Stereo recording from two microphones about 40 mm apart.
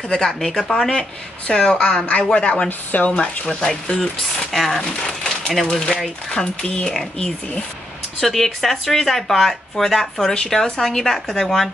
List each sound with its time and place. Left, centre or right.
0.1 s a woman's voice: centre
2.9 s speech: left
3.4 s a woman's voice: centre
4.5 s a woman's voice: centre
8.2 s speech: centre